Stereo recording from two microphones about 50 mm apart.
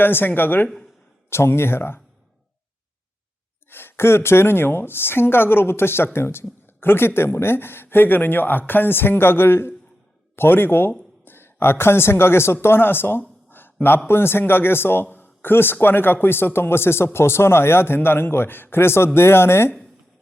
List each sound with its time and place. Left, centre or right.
0.0 s a man's voice: left
1.3 s a man's voice: left
3.7 s a man's voice: left
13.5 s a sound: left
14.1 s a man's voice: left